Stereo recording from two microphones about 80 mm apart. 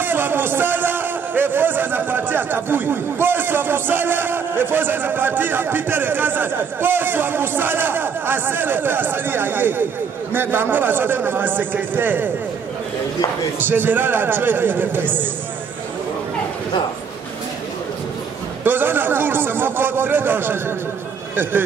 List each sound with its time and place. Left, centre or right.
0.0 s a man's voice: right
13.6 s a man's voice: right
18.6 s a man's voice: right